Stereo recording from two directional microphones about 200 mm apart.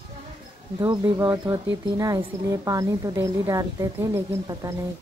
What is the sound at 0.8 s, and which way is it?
A woman's voice, 20° right (ahead or behind).